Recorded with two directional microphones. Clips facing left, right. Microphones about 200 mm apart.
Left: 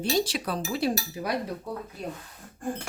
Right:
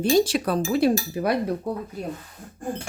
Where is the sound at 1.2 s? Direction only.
60° right (ahead or behind).